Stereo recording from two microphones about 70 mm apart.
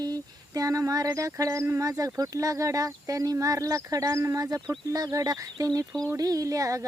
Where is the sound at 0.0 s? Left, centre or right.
Right.